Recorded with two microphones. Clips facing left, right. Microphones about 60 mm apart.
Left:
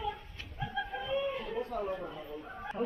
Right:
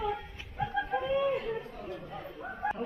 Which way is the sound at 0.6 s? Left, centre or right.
Right.